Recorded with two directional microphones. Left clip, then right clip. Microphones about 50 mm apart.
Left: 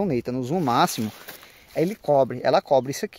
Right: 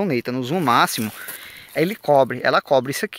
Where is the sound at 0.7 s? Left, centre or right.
Left.